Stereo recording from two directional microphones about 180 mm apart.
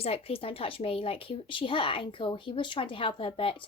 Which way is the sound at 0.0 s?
35° left (ahead or behind).